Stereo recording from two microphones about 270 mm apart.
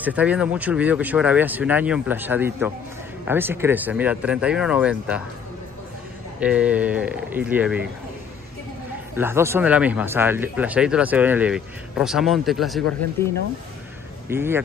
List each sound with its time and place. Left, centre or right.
0.0 s speech: centre
6.4 s speech: centre
9.1 s speech: centre
14.3 s speech: centre